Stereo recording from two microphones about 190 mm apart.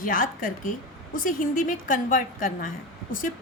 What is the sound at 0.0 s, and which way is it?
A woman's voice, 45° left (ahead or behind).